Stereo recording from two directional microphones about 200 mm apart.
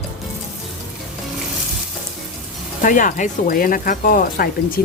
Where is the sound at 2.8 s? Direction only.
40° left (ahead or behind).